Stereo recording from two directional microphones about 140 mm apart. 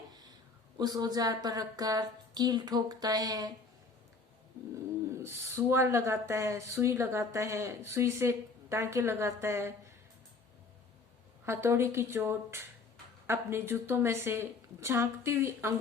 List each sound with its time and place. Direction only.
0.8 s speech: 30° right (ahead or behind)
5.1 s speech: 20° right (ahead or behind)
11.4 s a woman's voice: 15° right (ahead or behind)